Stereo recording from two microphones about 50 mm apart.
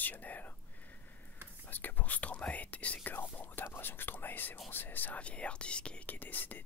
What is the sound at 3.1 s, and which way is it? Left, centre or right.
Speech, left.